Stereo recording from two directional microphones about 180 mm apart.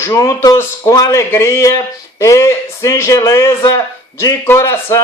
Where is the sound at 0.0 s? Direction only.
15° left (ahead or behind).